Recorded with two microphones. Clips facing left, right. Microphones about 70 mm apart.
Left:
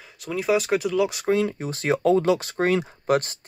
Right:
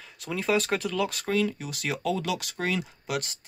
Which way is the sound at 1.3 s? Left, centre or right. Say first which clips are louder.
Left 5 dB; left.